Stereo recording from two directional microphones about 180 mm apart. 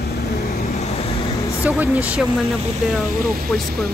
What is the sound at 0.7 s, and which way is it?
Vehicle, 35° left (ahead or behind).